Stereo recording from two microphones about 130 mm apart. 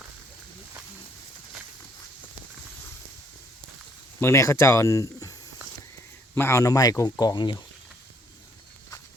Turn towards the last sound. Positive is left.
turn(degrees=35)  # may be behind; listen again after turning